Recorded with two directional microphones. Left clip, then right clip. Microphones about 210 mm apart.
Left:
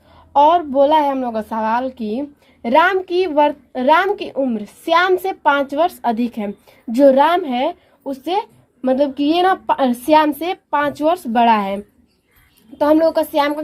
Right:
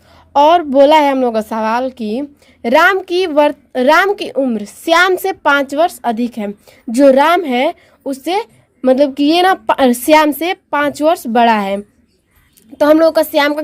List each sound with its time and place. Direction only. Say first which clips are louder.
0.3 s a woman's voice: right 4 dB; 35° right (ahead or behind)